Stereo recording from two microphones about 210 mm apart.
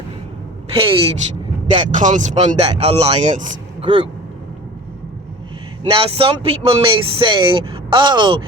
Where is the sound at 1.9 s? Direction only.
35° right (ahead or behind).